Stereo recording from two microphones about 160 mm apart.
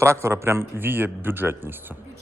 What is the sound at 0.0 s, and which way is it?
A man's voice, 15° right (ahead or behind).